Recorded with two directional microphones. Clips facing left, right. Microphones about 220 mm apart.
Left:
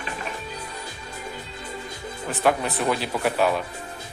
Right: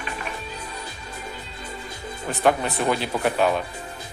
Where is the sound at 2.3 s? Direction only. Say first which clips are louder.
Right 1 dB; centre (ahead or behind).